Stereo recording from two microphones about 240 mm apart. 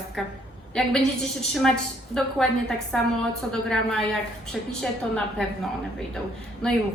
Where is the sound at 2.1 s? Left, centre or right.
Centre.